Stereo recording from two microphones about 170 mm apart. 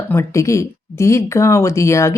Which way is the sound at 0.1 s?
15° left (ahead or behind).